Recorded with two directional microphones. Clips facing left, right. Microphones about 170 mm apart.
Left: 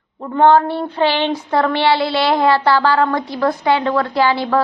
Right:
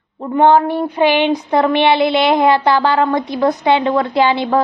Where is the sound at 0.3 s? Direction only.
15° right (ahead or behind).